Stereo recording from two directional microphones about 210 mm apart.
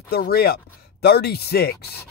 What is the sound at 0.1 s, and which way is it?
Speech, 45° left (ahead or behind).